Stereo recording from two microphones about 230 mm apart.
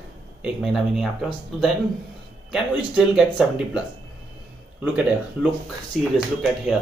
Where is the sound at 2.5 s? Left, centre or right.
Centre.